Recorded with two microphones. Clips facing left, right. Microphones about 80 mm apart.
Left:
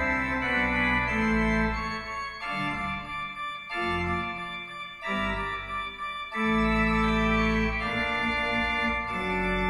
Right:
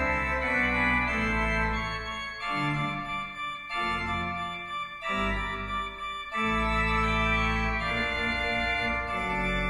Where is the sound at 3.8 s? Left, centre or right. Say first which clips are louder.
Left 2 dB; centre.